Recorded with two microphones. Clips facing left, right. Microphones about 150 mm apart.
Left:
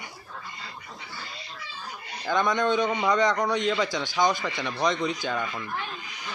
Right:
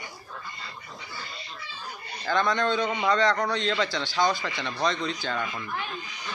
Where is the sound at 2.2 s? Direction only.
15° left (ahead or behind).